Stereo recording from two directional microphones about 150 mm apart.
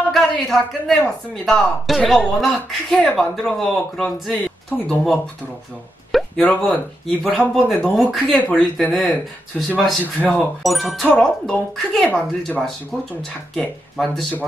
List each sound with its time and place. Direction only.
0.1 s speech: centre (ahead or behind)